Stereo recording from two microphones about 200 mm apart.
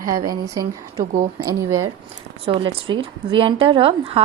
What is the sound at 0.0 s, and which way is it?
Speech, 45° right (ahead or behind).